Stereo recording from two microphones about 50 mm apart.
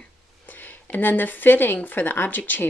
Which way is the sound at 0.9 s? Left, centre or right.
Left.